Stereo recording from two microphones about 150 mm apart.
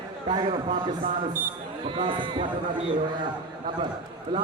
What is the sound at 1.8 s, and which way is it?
Speech, 35° right (ahead or behind).